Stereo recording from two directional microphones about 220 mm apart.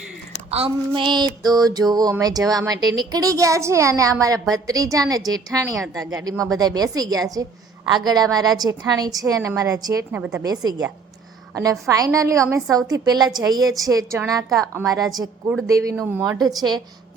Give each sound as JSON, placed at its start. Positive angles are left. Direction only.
{"t": 0.5, "sound": "a woman's voice", "side_deg": -25}